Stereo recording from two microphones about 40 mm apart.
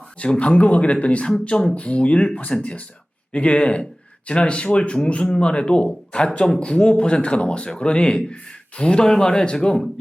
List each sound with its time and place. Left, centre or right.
0.2 s speech: left